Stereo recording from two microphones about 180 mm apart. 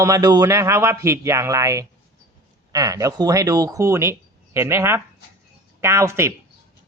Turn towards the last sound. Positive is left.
turn(degrees=-15)  # may be behind; listen again after turning